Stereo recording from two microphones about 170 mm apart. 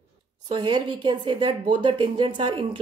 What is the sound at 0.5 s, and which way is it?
A woman's voice, 25° right (ahead or behind).